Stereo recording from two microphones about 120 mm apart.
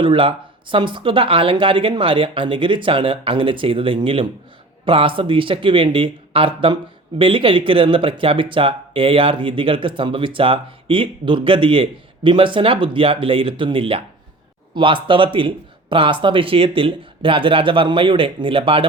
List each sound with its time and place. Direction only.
0.0 s speech: 45° right (ahead or behind)